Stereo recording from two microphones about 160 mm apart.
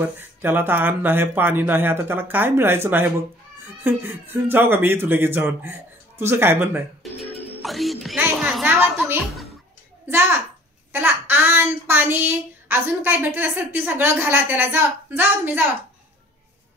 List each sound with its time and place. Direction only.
0.0 s speech: 10° right (ahead or behind)
7.6 s a child's voice: centre (ahead or behind)
10.0 s speech: 15° right (ahead or behind)